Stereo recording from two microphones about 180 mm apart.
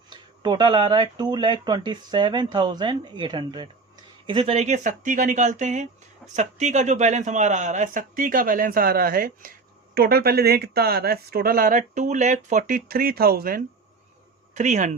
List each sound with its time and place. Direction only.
0.1 s speech: 25° right (ahead or behind); by 13.6 s 55° right (ahead or behind)
14.5 s speech: 40° right (ahead or behind)